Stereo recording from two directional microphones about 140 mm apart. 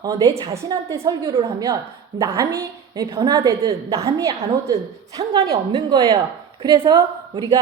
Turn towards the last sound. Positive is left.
turn(degrees=-30)  # may be behind; listen again after turning